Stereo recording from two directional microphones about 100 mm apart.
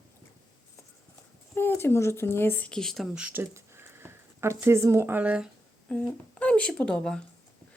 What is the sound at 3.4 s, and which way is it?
Speech, 25° right (ahead or behind).